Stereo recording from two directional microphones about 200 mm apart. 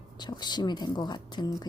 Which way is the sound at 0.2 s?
20° left (ahead or behind).